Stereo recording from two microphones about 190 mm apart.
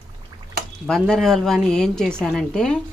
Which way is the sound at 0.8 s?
Centre (ahead or behind).